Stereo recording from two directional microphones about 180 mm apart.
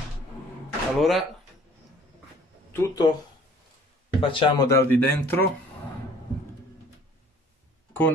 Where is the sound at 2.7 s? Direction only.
15° left (ahead or behind).